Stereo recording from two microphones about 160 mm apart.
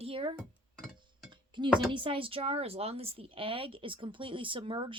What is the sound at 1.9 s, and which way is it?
Speech, 30° right (ahead or behind).